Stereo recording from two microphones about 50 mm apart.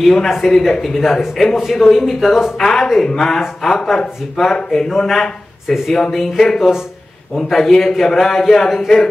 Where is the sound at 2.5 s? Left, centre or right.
Centre.